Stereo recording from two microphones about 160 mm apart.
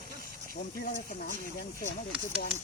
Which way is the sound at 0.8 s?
60° left (ahead or behind).